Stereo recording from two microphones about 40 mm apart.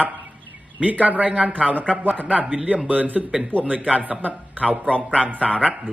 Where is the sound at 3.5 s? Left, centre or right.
Right.